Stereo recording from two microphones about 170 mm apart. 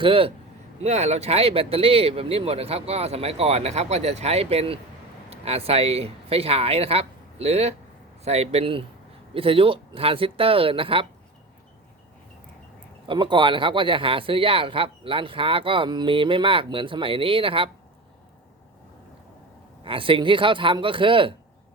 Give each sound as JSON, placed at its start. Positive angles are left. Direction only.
{"t": 0.0, "sound": "speech", "side_deg": -30}
{"t": 13.1, "sound": "speech", "side_deg": -30}
{"t": 19.8, "sound": "speech", "side_deg": -30}